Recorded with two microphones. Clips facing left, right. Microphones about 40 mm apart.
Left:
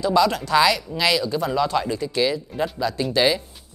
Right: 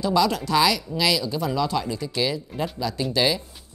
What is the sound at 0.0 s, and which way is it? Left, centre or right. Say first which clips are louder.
Speech: left 2 dB; centre.